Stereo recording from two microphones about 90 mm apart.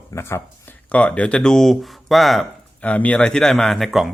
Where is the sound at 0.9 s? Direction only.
15° left (ahead or behind).